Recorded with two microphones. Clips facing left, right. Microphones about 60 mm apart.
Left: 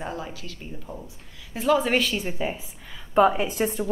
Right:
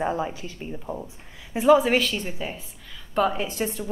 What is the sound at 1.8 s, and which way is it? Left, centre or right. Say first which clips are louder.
A woman's voice: right 1 dB; centre.